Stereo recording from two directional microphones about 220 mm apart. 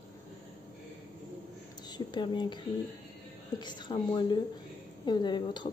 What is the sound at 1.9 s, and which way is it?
A woman's voice, 20° left (ahead or behind).